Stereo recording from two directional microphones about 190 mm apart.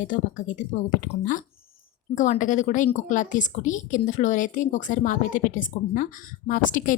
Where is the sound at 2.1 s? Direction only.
40° left (ahead or behind).